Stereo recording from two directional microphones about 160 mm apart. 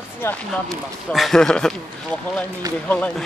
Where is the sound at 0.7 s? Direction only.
Centre (ahead or behind).